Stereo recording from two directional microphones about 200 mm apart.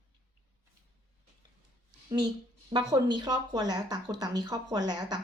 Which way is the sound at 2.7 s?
20° right (ahead or behind).